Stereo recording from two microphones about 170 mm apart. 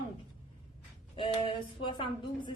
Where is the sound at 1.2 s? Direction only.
30° left (ahead or behind).